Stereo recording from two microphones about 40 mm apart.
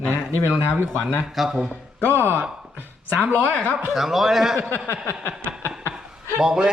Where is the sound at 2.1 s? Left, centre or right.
Right.